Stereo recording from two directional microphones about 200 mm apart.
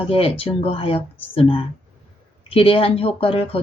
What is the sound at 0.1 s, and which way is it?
Speech, 30° left (ahead or behind).